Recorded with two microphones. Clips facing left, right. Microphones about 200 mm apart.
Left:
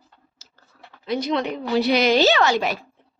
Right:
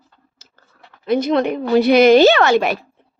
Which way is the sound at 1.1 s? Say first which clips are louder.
Right 7 dB; 55° right (ahead or behind).